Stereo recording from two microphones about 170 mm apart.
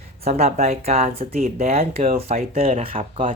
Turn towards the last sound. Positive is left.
turn(degrees=-35)  # may be behind; listen again after turning